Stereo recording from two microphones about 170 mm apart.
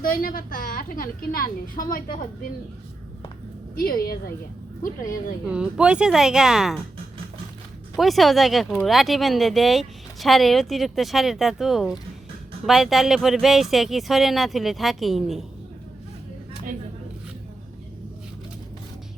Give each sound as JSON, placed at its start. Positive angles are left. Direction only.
{"t": 0.0, "sound": "a woman's voice", "side_deg": 55}
{"t": 3.8, "sound": "a woman's voice", "side_deg": 60}
{"t": 5.5, "sound": "speech", "side_deg": -5}
{"t": 7.9, "sound": "speech", "side_deg": 0}